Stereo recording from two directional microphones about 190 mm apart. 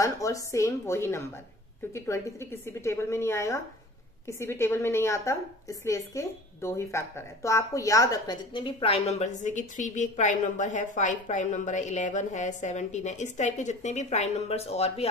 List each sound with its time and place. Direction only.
0.0 s a woman's voice: 15° left (ahead or behind); by 15.0 s 30° left (ahead or behind)